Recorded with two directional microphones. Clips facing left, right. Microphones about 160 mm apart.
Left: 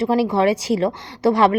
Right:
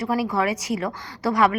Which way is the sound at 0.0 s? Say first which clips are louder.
Left 6 dB; 25° left (ahead or behind).